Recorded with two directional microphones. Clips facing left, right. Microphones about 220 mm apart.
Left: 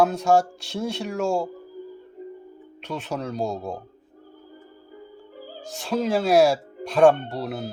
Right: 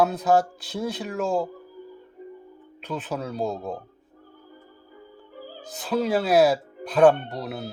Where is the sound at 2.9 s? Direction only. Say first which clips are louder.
Left 1 dB; 5° right (ahead or behind).